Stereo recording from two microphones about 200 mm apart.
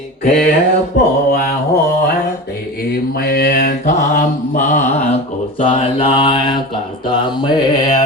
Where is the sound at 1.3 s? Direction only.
50° left (ahead or behind).